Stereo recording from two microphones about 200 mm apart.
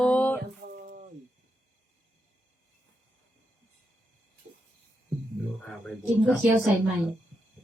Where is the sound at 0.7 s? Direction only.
45° right (ahead or behind).